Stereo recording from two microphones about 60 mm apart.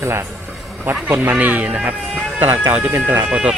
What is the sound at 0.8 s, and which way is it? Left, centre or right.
Speech, right.